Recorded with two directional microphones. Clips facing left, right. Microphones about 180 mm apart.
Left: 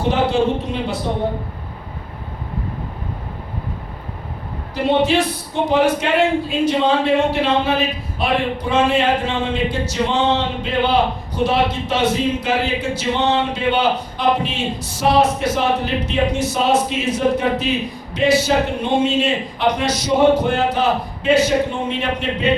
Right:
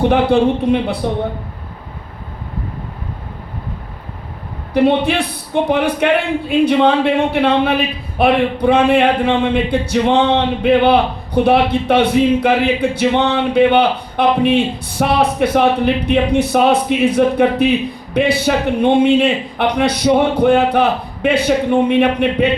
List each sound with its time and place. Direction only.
0.1 s speech: 60° right (ahead or behind)
4.7 s speech: 60° right (ahead or behind)